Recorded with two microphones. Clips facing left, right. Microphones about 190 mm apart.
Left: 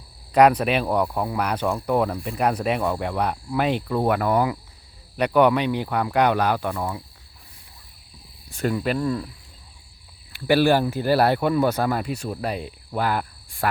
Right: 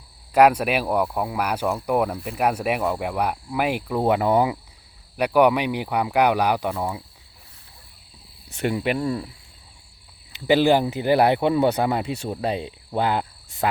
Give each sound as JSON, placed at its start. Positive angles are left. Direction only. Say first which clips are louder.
{"t": 0.3, "sound": "speech", "louder": "even", "side_deg": -5}
{"t": 5.1, "sound": "speech", "louder": "even", "side_deg": -10}
{"t": 8.5, "sound": "speech", "louder": "even", "side_deg": -20}
{"t": 10.3, "sound": "speech", "louder": "right 1 dB", "side_deg": -20}